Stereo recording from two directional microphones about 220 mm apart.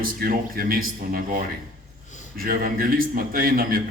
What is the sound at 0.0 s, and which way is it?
A man's voice, 40° right (ahead or behind).